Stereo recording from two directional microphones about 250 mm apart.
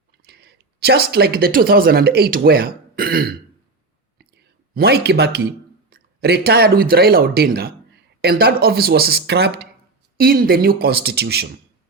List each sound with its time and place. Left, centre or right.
0.2 s speech: right